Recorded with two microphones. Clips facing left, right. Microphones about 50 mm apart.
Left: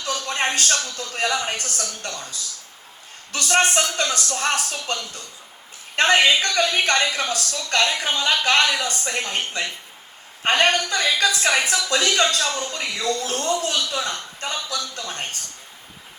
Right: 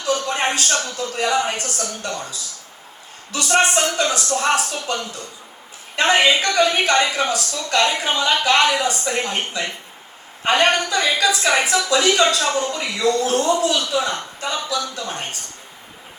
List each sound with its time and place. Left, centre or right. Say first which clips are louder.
0.0 s a sound: right 4 dB; right
0.6 s a man's voice: right 2 dB; right
3.4 s a man's voice: right 2 dB; right
10.5 s a man's voice: right 2 dB; right